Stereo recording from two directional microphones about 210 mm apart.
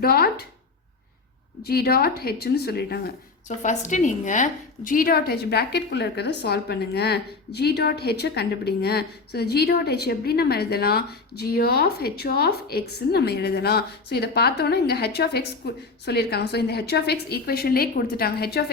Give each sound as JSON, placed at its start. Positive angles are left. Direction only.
{"t": 0.0, "sound": "a woman's voice", "side_deg": 45}
{"t": 1.6, "sound": "a woman's voice", "side_deg": 50}
{"t": 3.6, "sound": "a woman's voice", "side_deg": 35}